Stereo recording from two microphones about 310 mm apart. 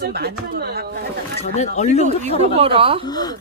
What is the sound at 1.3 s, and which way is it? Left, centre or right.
Speech, left.